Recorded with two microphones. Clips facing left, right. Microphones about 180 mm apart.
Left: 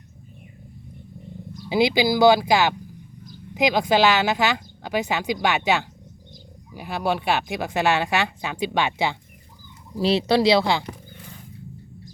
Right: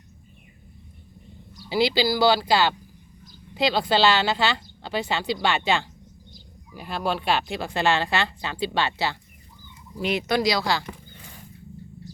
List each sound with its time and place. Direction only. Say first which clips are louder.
1.7 s speech: left 3 dB; 15° left (ahead or behind)
10.0 s speech: left 5 dB; 30° left (ahead or behind)